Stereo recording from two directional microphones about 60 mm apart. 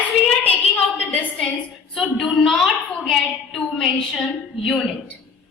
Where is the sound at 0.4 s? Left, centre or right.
Left.